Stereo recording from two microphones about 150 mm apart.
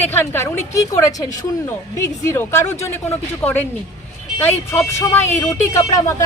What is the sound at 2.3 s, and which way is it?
Speech, 15° left (ahead or behind).